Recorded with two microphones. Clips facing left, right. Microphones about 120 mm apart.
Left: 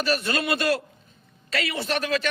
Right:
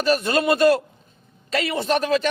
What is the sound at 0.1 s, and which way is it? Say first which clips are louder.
A man's voice: right 8 dB; 40° right (ahead or behind).